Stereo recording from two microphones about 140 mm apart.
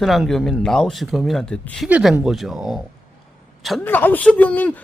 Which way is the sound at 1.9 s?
10° right (ahead or behind).